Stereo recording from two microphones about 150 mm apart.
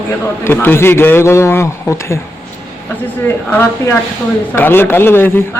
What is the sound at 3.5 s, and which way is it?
A man's voice, 15° left (ahead or behind).